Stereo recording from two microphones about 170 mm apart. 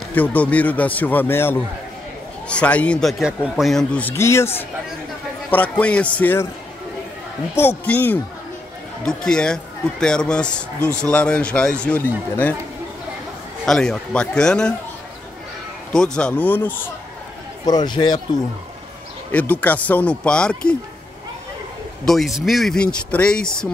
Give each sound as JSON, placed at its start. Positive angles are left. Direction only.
{"t": 0.1, "sound": "a man's voice", "side_deg": 10}
{"t": 7.5, "sound": "a man's voice", "side_deg": 10}
{"t": 13.7, "sound": "speech", "side_deg": 5}
{"t": 15.9, "sound": "a man's voice", "side_deg": 5}
{"t": 17.6, "sound": "speech", "side_deg": 25}
{"t": 19.3, "sound": "a man's voice", "side_deg": 10}
{"t": 22.0, "sound": "speech", "side_deg": 0}